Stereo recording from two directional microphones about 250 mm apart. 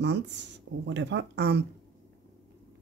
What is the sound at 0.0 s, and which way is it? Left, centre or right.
Speech, right.